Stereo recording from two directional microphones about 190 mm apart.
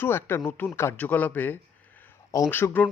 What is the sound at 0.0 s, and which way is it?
Speech, 10° left (ahead or behind).